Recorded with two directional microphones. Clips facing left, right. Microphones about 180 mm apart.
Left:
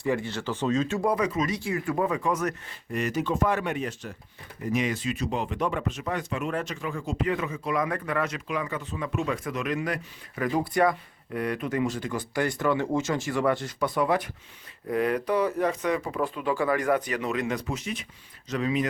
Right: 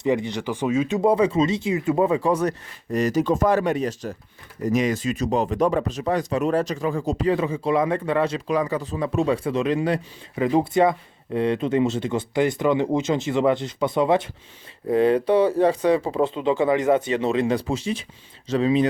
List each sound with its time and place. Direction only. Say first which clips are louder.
0.0 s speech: right 5 dB; 20° right (ahead or behind)